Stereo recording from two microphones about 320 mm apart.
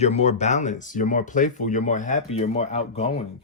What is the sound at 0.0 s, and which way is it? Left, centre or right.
Speech, centre.